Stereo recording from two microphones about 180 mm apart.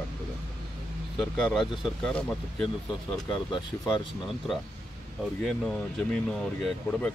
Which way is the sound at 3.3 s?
25° left (ahead or behind).